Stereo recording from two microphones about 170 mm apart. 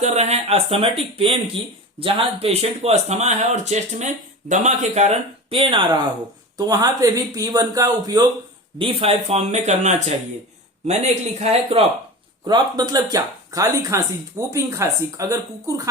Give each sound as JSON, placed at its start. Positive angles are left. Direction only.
{"t": 0.0, "sound": "speech", "side_deg": -40}
{"t": 8.8, "sound": "speech", "side_deg": -35}
{"t": 12.5, "sound": "speech", "side_deg": -25}